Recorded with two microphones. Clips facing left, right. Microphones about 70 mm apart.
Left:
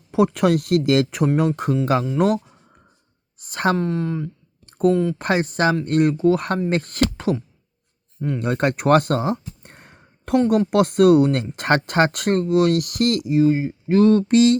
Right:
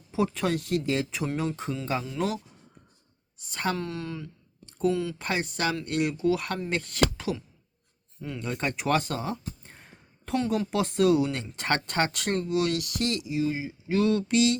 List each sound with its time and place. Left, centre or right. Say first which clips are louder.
0.3 s speech: left 9 dB; left
3.8 s speech: left 10 dB; left
4.6 s a sound: left 8 dB; left
4.9 s speech: left 9 dB; left
5.2 s speech: left 9 dB; left
8.4 s speech: left 9 dB; left
9.6 s a sound: left 5 dB; left
10.7 s speech: left 8 dB; left